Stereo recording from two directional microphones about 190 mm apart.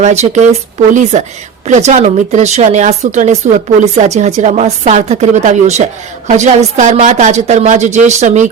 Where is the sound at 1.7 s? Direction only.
40° right (ahead or behind).